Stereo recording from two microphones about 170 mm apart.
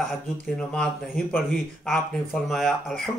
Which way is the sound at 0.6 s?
5° left (ahead or behind).